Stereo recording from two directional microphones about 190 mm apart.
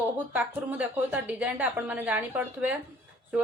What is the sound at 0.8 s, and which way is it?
A woman's voice, 10° right (ahead or behind).